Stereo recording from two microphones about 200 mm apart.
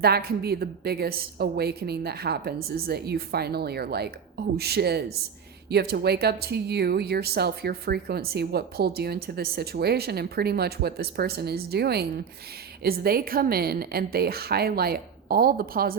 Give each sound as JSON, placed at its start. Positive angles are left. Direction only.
{"t": 0.0, "sound": "speech", "side_deg": -50}